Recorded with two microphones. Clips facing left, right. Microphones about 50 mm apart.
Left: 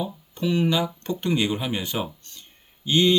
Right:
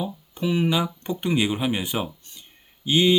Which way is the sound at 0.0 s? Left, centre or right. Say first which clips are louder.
Even; centre.